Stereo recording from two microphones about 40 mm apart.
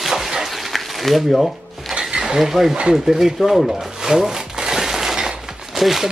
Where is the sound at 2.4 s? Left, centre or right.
Centre.